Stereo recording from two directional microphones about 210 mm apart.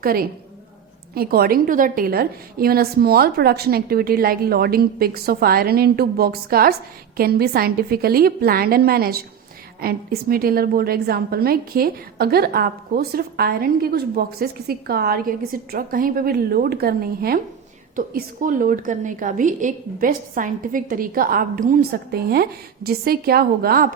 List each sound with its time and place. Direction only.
0.0 s a woman's voice: 45° right (ahead or behind)